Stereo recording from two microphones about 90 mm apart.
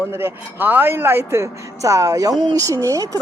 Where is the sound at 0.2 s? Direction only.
20° right (ahead or behind); by 3.2 s 40° right (ahead or behind).